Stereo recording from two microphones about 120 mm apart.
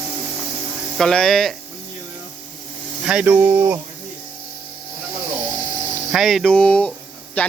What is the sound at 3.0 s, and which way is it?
Speech, 10° right (ahead or behind).